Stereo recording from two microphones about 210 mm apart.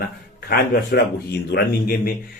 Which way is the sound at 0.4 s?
45° left (ahead or behind).